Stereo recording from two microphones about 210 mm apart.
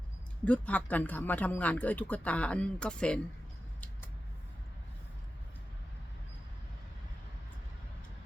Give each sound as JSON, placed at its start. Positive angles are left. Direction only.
{"t": 0.4, "sound": "speech", "side_deg": 5}